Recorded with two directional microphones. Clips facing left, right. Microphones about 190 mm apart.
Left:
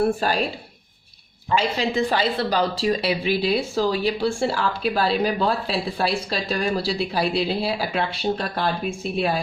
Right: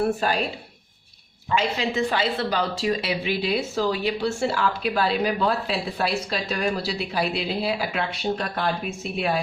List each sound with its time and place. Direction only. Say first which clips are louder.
1.5 s speech: left 2 dB; 35° left (ahead or behind)